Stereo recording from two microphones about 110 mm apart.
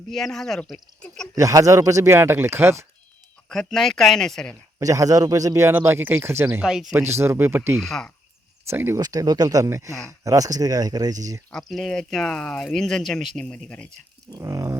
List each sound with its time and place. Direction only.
0.1 s speech: centre (ahead or behind)
1.4 s speech: 30° right (ahead or behind)
3.5 s speech: centre (ahead or behind)
4.8 s speech: 30° right (ahead or behind)
6.6 s speech: 5° right (ahead or behind)
6.9 s speech: 25° right (ahead or behind)
7.8 s speech: 5° left (ahead or behind)
8.6 s speech: 25° right (ahead or behind)
9.0 s speech: 35° right (ahead or behind)
9.9 s speech: 30° left (ahead or behind)
10.2 s speech: 30° right (ahead or behind)
11.5 s speech: 5° left (ahead or behind)
14.3 s speech: 35° right (ahead or behind)